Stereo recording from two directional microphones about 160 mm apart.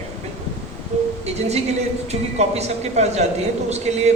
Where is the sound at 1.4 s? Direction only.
40° right (ahead or behind).